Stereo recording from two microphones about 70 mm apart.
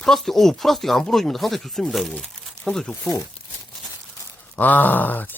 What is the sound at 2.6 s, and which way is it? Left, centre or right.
Speech, centre.